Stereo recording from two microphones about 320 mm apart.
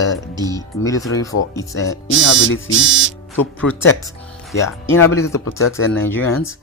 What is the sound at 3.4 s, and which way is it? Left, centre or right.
A man's voice, centre.